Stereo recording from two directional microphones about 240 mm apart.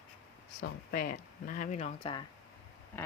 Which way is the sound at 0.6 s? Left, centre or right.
Left.